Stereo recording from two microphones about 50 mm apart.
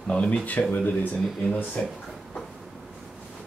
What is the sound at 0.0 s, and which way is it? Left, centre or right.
Speech, left.